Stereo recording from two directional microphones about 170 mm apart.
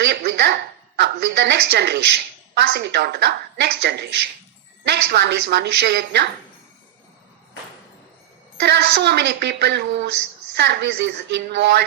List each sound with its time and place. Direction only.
0.0 s a woman's voice: 80° right
8.5 s a woman's voice: 75° right (ahead or behind)